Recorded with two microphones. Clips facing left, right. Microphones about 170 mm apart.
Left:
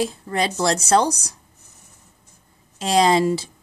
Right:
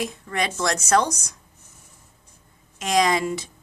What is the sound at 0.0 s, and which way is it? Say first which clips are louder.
A woman's voice: left 4 dB; 30° left (ahead or behind).